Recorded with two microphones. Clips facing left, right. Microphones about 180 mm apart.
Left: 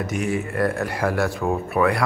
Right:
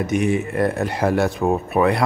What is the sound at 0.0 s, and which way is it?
Speech, 20° right (ahead or behind).